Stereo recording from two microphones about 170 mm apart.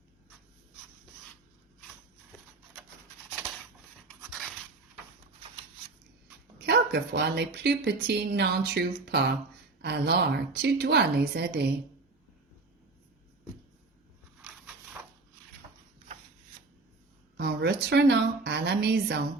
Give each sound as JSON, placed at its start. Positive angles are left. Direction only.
{"t": 4.3, "sound": "a sound", "side_deg": 0}
{"t": 6.7, "sound": "speech", "side_deg": -75}
{"t": 17.3, "sound": "speech", "side_deg": -75}